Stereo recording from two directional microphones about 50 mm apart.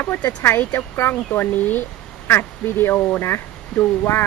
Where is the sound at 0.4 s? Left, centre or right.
Left.